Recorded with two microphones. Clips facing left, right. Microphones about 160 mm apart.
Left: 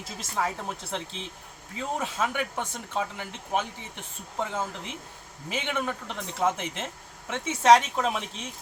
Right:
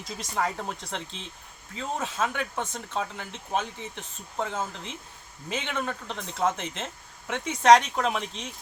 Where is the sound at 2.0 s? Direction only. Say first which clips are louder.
Even; 10° left (ahead or behind).